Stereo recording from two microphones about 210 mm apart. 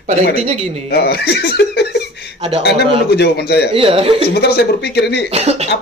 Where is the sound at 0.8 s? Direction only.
50° left (ahead or behind).